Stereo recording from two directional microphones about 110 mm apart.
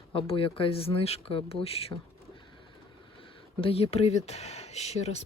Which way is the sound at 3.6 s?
60° left (ahead or behind).